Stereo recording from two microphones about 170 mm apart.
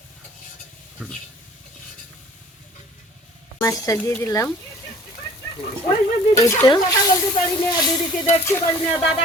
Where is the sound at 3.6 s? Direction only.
20° left (ahead or behind).